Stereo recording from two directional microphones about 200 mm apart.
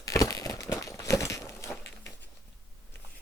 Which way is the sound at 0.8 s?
15° left (ahead or behind).